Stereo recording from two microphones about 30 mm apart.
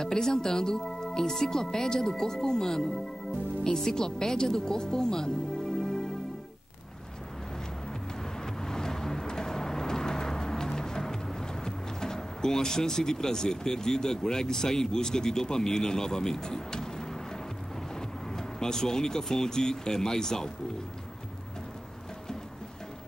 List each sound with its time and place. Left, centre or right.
0.0 s speech: centre
8.2 s vehicle: centre
17.9 s speech: centre